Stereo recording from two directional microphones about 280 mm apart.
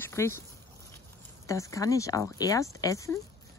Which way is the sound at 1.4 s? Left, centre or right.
Centre.